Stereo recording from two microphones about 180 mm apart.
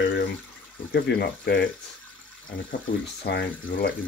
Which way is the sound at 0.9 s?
70° left (ahead or behind).